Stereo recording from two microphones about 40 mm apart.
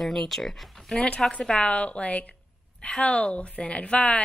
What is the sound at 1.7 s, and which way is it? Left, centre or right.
A woman's voice, left.